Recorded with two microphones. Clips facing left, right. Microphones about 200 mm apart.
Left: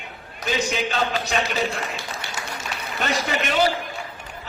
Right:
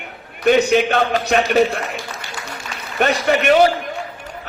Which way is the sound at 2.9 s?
65° right (ahead or behind).